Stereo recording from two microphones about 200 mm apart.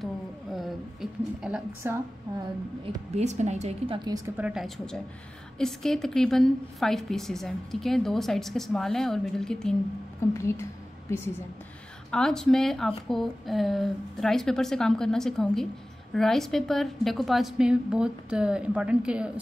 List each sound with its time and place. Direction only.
0.0 s a sound: centre (ahead or behind)
1.5 s a woman's voice: 5° right (ahead or behind)
2.8 s a woman's voice: 30° right (ahead or behind)
4.4 s a woman's voice: 5° right (ahead or behind)